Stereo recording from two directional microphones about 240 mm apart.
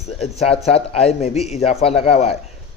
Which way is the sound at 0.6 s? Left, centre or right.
Left.